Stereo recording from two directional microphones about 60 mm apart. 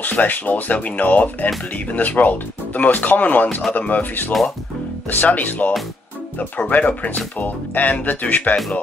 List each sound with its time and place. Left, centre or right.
0.0 s speech: left